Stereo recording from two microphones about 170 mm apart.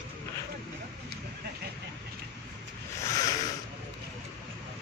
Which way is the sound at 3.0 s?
20° left (ahead or behind).